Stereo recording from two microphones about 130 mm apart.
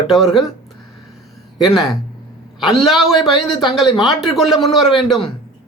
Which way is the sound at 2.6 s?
Centre (ahead or behind).